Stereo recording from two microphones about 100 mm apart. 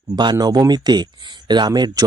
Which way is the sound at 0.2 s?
45° right (ahead or behind).